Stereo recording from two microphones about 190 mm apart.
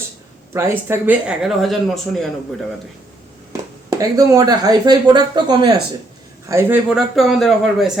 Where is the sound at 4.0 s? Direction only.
20° right (ahead or behind); by 7.9 s centre (ahead or behind).